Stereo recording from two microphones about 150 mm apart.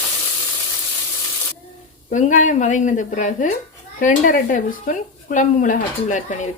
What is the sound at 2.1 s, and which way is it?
Speech, 55° left (ahead or behind).